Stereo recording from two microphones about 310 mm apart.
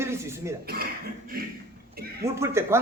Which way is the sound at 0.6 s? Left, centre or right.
Right.